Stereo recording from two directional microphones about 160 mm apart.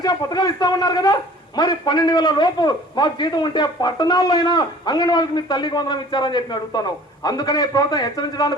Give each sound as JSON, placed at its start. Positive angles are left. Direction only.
{"t": 0.0, "sound": "a man's voice", "side_deg": 25}